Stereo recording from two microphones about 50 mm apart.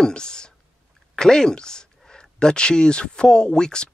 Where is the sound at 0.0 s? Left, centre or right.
Centre.